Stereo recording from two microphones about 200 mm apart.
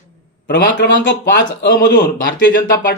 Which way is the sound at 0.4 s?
60° left (ahead or behind).